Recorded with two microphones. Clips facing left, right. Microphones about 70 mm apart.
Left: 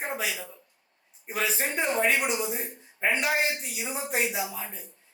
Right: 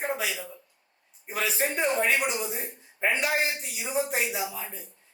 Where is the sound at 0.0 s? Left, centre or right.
Centre.